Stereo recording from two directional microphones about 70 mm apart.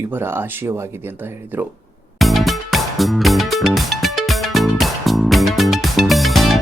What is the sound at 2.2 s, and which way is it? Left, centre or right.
Music, centre.